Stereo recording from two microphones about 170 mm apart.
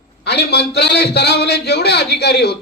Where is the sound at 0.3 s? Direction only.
75° left (ahead or behind).